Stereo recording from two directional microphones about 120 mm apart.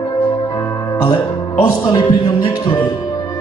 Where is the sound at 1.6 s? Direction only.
35° left (ahead or behind).